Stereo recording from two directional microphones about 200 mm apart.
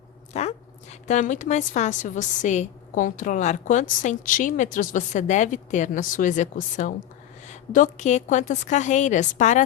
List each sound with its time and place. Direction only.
0.3 s a woman's voice: 35° left (ahead or behind)